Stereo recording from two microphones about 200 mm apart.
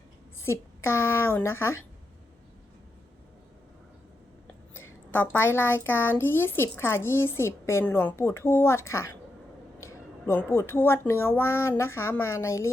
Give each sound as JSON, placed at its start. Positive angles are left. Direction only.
{"t": 0.4, "sound": "a woman's voice", "side_deg": 15}
{"t": 4.7, "sound": "a woman's voice", "side_deg": 10}